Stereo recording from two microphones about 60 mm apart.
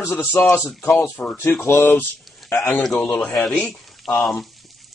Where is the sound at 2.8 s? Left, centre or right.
Centre.